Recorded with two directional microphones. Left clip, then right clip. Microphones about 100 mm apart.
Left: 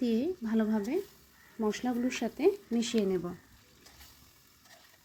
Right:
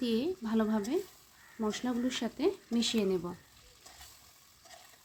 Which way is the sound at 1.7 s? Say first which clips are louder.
Left 1 dB; 15° left (ahead or behind).